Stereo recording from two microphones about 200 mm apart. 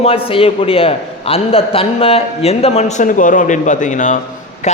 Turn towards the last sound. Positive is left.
turn(degrees=35)  # may be behind; listen again after turning